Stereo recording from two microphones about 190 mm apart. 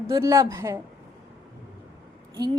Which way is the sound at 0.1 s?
15° right (ahead or behind).